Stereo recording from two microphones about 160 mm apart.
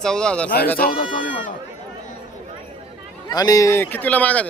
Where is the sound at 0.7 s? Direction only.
65° left (ahead or behind).